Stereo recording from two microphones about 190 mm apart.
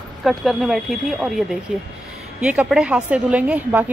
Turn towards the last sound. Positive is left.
turn(degrees=-5)  # may be behind; listen again after turning